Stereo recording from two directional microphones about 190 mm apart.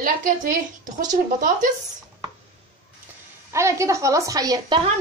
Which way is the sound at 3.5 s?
15° right (ahead or behind).